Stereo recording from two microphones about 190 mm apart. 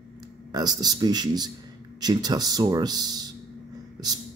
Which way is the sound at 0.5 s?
20° right (ahead or behind).